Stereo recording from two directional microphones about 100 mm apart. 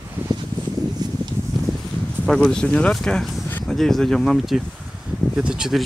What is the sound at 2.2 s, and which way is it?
Speech, 5° left (ahead or behind).